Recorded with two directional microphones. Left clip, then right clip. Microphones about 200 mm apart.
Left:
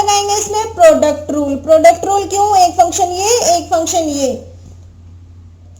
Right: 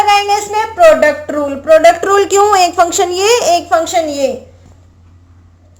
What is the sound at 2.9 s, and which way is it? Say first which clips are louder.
Speech: right 2 dB; 30° right (ahead or behind).